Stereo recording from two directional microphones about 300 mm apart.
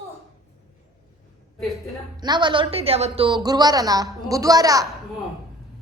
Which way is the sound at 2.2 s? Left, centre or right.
Centre.